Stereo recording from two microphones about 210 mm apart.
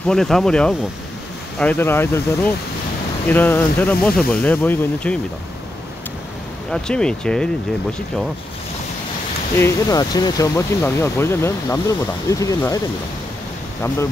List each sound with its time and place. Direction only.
0.0 s speech: centre (ahead or behind)
6.7 s speech: 5° left (ahead or behind)
9.6 s speech: 15° left (ahead or behind)